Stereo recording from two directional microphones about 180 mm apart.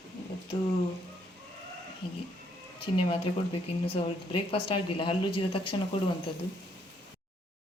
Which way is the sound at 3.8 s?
30° left (ahead or behind).